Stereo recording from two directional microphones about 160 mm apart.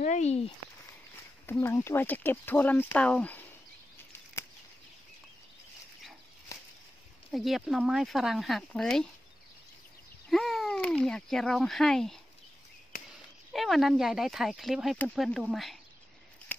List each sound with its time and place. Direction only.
0.0 s speech: 45° left (ahead or behind)
1.4 s speech: 15° left (ahead or behind)
7.3 s speech: centre (ahead or behind)
10.3 s speech: centre (ahead or behind)
13.5 s speech: centre (ahead or behind)